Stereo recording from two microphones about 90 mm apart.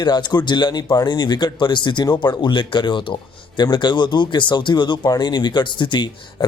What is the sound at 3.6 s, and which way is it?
Speech, 55° left (ahead or behind).